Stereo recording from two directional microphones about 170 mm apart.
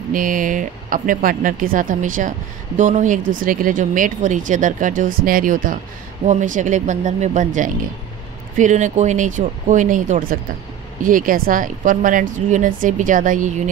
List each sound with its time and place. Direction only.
0.1 s speech: 50° right (ahead or behind)